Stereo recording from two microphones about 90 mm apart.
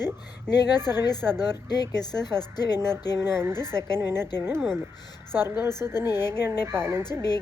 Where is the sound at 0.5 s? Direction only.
45° left (ahead or behind).